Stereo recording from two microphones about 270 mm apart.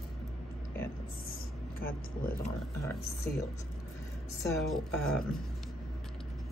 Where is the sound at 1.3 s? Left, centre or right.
Left.